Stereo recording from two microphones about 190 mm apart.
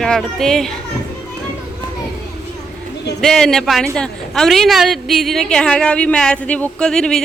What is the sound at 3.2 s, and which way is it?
A man's voice, centre (ahead or behind).